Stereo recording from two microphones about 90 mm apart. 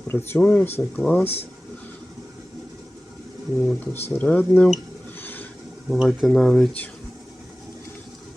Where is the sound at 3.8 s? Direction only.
20° left (ahead or behind).